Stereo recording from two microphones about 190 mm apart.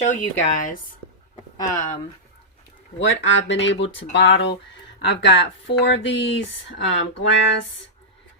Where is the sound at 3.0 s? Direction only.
80° left.